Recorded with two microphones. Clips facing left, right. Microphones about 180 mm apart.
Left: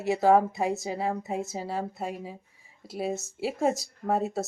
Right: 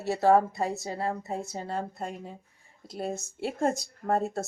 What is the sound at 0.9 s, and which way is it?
Speech, 10° left (ahead or behind).